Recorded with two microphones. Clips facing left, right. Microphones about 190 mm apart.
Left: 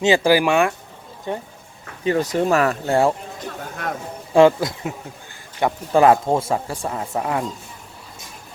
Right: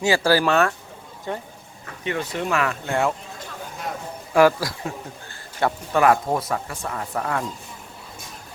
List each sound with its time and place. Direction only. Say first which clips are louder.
0.0 s speech: left 3 dB; 20° left (ahead or behind)
2.0 s speech: left 7 dB; 40° left (ahead or behind)
4.4 s speech: left 3 dB; 20° left (ahead or behind)